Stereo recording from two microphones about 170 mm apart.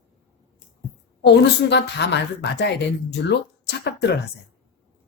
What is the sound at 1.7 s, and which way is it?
Speech, 90° left.